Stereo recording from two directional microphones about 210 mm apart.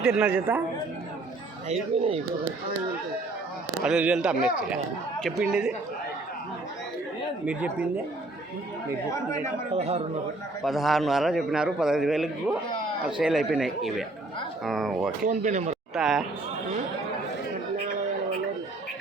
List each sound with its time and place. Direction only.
0.0 s a man's voice: 5° right (ahead or behind)
1.7 s speech: 30° right (ahead or behind)
3.8 s a man's voice: 5° right (ahead or behind)
7.4 s a woman's voice: 5° right (ahead or behind)
9.1 s speech: 15° left (ahead or behind)
9.7 s speech: 30° right (ahead or behind)
10.6 s a man's voice: centre (ahead or behind)
15.2 s speech: 35° right (ahead or behind)
16.0 s a man's voice: centre (ahead or behind)